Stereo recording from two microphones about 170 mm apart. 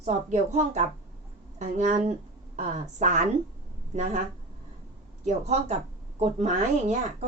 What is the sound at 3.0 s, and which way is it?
A woman's voice, 45° right (ahead or behind).